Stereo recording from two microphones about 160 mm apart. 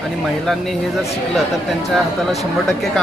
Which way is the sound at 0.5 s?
5° left (ahead or behind).